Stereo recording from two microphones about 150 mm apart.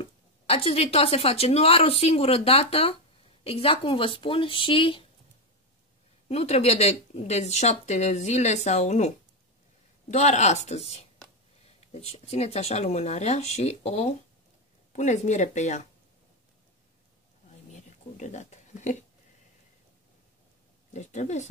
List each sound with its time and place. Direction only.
0.0 s speech: 40° left (ahead or behind)
6.2 s speech: 45° left (ahead or behind)
10.1 s speech: 50° left (ahead or behind)
17.7 s a sound: 55° left (ahead or behind)
20.9 s speech: 50° left (ahead or behind)